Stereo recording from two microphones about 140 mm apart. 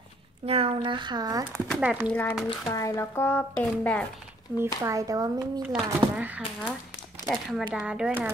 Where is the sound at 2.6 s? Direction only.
25° left (ahead or behind).